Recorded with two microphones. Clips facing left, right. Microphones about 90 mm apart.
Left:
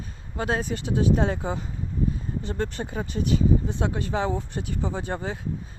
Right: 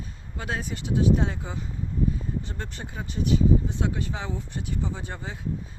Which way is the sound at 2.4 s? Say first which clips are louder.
Left 8 dB; 50° left (ahead or behind).